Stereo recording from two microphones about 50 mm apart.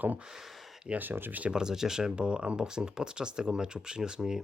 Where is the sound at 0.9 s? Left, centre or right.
Right.